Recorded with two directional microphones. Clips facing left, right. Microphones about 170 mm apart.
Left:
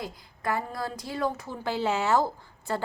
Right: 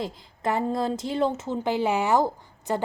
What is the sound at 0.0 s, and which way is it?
A woman's voice, 25° right (ahead or behind).